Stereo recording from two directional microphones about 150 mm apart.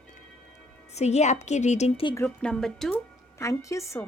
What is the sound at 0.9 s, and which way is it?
A woman's voice, 50° left (ahead or behind).